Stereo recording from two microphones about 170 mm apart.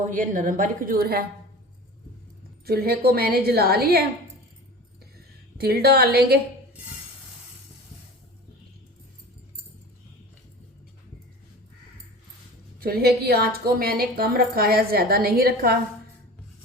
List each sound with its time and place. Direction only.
0.0 s a woman's voice: 50° right (ahead or behind)
2.6 s a woman's voice: 65° right (ahead or behind)
5.5 s a woman's voice: 65° right (ahead or behind)
12.8 s a woman's voice: 65° right (ahead or behind)